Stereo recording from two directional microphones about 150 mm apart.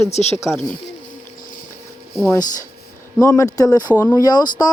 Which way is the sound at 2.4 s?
60° left (ahead or behind).